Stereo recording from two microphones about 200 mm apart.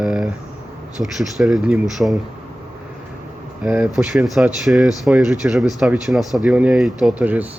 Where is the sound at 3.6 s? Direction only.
5° right (ahead or behind).